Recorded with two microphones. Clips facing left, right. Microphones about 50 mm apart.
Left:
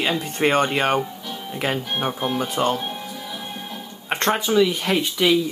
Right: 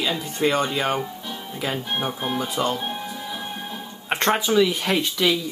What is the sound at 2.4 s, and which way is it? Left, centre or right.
Speech, left.